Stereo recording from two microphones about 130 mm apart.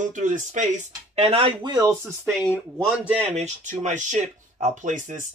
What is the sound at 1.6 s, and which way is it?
Speech, 30° right (ahead or behind).